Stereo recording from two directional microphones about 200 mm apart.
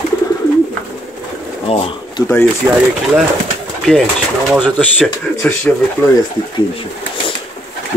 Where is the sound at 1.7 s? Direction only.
25° left (ahead or behind).